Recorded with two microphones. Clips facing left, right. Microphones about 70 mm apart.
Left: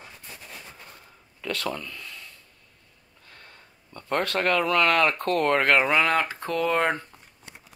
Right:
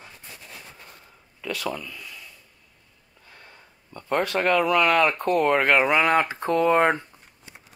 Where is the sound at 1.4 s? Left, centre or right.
Centre.